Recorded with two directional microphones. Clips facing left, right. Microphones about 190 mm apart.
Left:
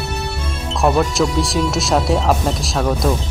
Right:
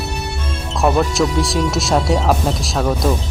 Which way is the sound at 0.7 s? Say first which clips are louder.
Even; centre (ahead or behind).